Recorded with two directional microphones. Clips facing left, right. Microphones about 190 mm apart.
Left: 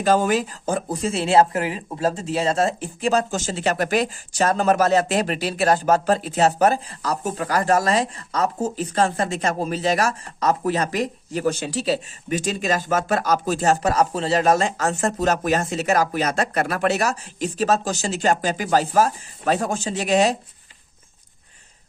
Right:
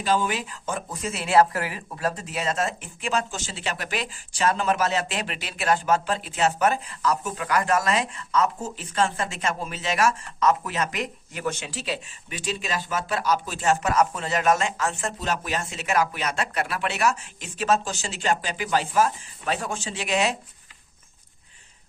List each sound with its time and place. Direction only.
0.0 s speech: 45° left (ahead or behind)